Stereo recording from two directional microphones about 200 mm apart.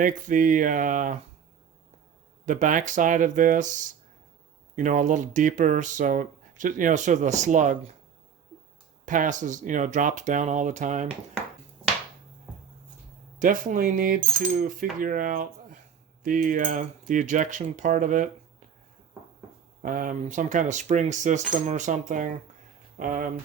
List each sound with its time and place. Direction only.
0.0 s speech: 40° right (ahead or behind)
2.5 s speech: 40° right (ahead or behind)
9.0 s speech: 40° right (ahead or behind)
13.4 s speech: 40° right (ahead or behind)
19.8 s speech: 40° right (ahead or behind)